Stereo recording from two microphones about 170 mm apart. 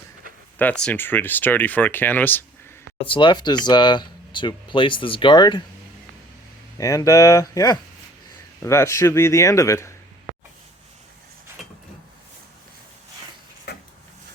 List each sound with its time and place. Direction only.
0.6 s speech: 5° left (ahead or behind)
3.1 s speech: 30° left (ahead or behind)
6.7 s speech: 20° left (ahead or behind)